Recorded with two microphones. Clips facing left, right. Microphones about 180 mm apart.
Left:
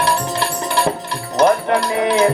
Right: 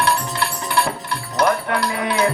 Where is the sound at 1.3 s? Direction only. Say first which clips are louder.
Left 5 dB; 25° left (ahead or behind).